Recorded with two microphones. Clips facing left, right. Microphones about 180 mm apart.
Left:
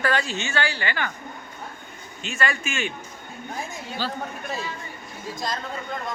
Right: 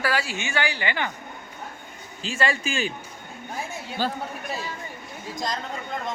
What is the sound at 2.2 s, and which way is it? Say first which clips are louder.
Speech: right 2 dB; 30° right (ahead or behind).